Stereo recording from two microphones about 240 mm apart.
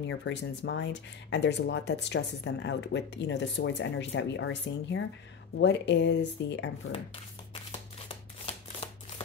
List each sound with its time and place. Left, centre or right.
0.0 s speech: left